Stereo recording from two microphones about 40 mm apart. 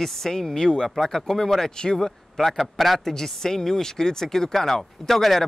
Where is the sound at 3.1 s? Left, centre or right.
Centre.